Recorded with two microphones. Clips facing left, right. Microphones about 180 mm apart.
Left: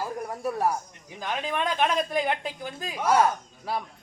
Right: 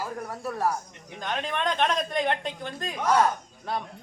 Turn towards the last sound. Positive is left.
turn(degrees=5)  # may be behind; listen again after turning